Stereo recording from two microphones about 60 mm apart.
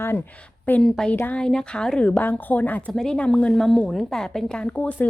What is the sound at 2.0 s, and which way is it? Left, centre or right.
Speech, left.